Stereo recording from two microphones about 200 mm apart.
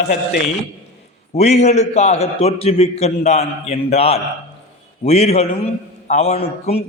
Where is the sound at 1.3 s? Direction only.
35° left (ahead or behind).